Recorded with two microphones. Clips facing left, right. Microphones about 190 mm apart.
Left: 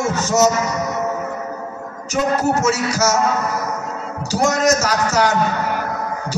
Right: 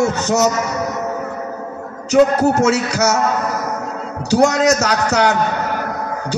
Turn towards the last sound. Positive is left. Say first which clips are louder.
# right 2 dB
turn(degrees=-65)  # may be behind; listen again after turning